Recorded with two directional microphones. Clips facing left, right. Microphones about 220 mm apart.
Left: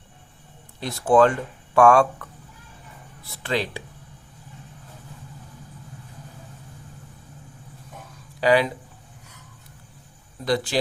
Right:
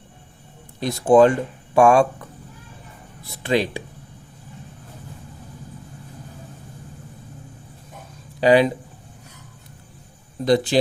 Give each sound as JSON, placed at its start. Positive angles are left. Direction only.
{"t": 0.8, "sound": "speech", "side_deg": -15}
{"t": 3.2, "sound": "speech", "side_deg": -15}
{"t": 8.4, "sound": "speech", "side_deg": -20}
{"t": 10.4, "sound": "speech", "side_deg": -20}